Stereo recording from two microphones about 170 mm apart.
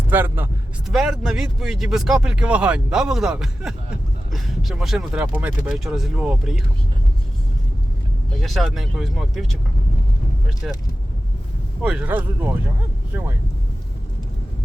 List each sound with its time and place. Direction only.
0.1 s speech: 10° right (ahead or behind)
0.9 s speech: centre (ahead or behind)
8.3 s speech: centre (ahead or behind)
10.6 s speech: 5° right (ahead or behind)
11.8 s speech: 5° right (ahead or behind)